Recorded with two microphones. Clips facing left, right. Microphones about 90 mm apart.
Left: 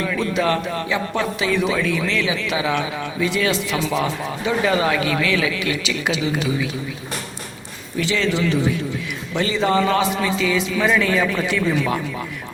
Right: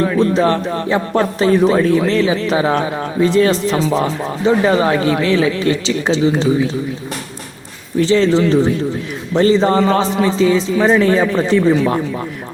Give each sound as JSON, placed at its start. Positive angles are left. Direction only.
{"t": 0.0, "sound": "speech", "side_deg": -35}
{"t": 7.9, "sound": "speech", "side_deg": -35}